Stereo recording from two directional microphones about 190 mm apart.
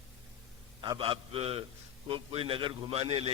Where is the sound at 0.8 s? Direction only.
25° right (ahead or behind).